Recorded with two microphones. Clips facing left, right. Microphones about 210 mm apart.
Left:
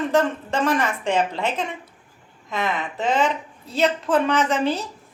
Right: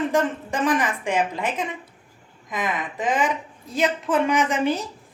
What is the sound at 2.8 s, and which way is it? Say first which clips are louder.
A woman's voice: left 2 dB; 15° right (ahead or behind).